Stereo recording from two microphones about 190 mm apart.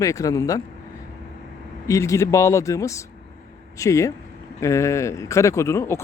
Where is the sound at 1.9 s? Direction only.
15° left (ahead or behind).